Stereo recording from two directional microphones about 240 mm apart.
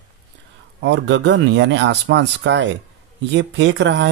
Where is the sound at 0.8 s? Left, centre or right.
Right.